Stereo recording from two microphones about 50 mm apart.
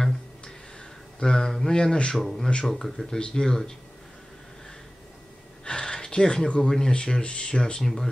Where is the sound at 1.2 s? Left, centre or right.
Centre.